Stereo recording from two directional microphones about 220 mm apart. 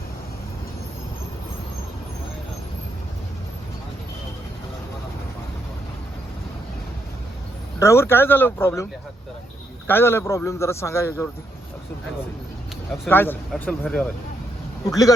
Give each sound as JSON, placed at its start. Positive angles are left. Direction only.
{"t": 7.8, "sound": "a man's voice", "side_deg": 10}
{"t": 13.1, "sound": "speech", "side_deg": 10}
{"t": 14.8, "sound": "a man's voice", "side_deg": 15}